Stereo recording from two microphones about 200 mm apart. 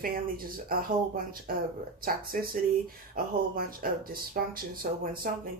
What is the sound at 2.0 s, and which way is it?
Speech, 45° right (ahead or behind).